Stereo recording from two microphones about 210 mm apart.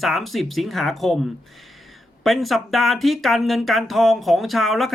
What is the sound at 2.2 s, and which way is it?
Speech, centre (ahead or behind).